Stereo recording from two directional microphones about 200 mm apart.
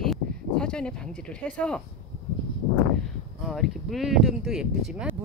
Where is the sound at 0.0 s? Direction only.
5° left (ahead or behind).